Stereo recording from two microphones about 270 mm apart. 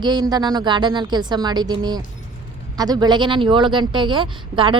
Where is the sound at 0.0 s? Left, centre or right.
Centre.